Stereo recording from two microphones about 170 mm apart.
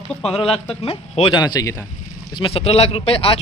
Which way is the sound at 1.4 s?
20° left (ahead or behind).